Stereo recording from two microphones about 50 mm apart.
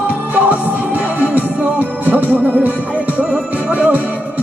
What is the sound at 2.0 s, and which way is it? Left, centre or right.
Music, right.